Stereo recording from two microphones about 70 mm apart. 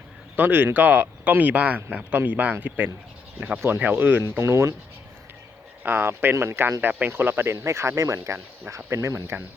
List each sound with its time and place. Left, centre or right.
0.3 s speech: right
4.4 s speech: right
5.8 s speech: right